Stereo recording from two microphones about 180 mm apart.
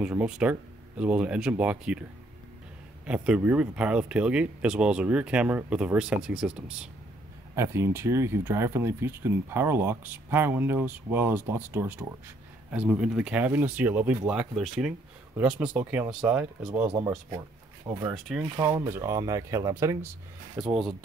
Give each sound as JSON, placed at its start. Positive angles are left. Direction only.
{"t": 0.0, "sound": "speech", "side_deg": -5}
{"t": 3.1, "sound": "speech", "side_deg": -5}
{"t": 7.5, "sound": "speech", "side_deg": -15}
{"t": 20.5, "sound": "speech", "side_deg": -5}